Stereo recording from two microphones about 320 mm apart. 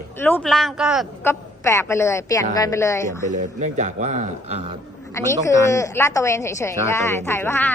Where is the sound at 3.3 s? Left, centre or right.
Right.